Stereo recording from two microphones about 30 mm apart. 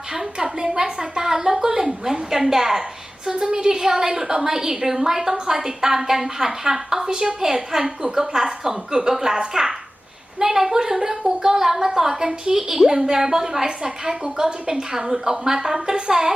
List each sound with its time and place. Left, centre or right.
0.1 s a woman's voice: centre
3.2 s a woman's voice: right
13.7 s a woman's voice: right